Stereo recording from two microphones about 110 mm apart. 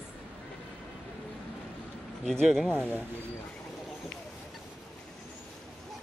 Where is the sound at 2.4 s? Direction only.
5° left (ahead or behind).